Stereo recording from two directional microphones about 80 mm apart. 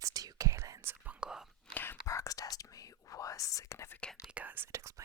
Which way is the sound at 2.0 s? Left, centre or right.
Left.